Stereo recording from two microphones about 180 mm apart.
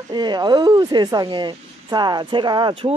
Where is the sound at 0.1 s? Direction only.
25° right (ahead or behind).